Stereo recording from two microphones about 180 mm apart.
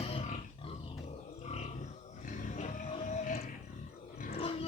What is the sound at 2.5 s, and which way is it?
Music, 40° left (ahead or behind).